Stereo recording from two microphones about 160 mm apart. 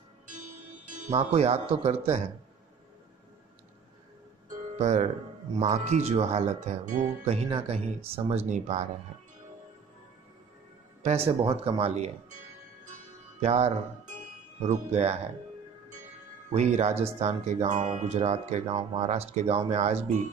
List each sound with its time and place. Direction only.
0.8 s speech: 45° right (ahead or behind)
4.7 s speech: 45° right (ahead or behind)
7.4 s speech: 35° right (ahead or behind)
11.0 s speech: 40° right (ahead or behind)
13.4 s speech: 40° right (ahead or behind)
16.5 s speech: 45° right (ahead or behind)